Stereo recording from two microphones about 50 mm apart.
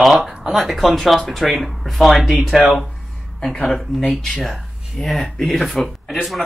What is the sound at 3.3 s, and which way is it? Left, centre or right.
Speech, centre.